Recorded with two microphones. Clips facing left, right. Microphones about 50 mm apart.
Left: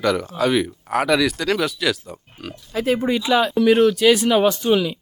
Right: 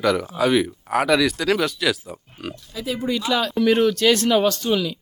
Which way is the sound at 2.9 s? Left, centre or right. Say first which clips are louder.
Left 2 dB; left.